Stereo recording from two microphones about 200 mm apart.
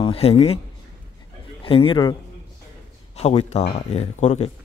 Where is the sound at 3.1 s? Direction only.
30° left (ahead or behind).